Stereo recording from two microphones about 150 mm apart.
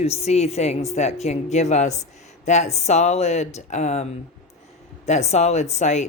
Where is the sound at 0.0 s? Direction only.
45° left (ahead or behind).